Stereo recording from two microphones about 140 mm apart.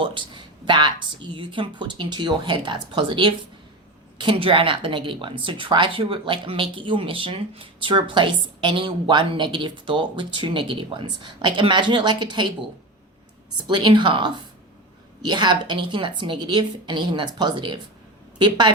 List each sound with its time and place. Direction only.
0.0 s speech: 35° right (ahead or behind)
13.7 s speech: 35° right (ahead or behind)